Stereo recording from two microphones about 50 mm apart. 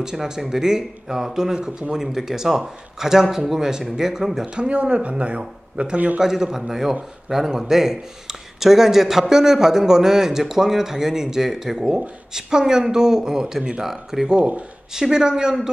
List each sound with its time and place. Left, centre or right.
0.0 s a man's voice: centre
4.6 s speech: right
6.1 s a man's voice: centre